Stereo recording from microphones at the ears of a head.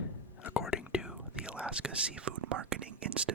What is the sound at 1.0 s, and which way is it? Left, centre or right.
Whispering, centre.